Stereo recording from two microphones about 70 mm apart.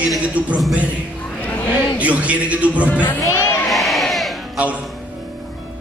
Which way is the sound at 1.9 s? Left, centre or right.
Centre.